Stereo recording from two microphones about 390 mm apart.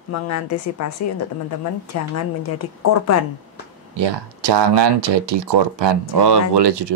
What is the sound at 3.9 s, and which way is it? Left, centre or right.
Speech, right.